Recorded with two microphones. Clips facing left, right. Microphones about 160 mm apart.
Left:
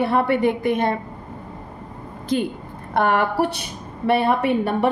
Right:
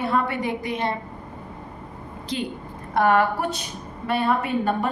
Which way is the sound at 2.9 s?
65° left (ahead or behind).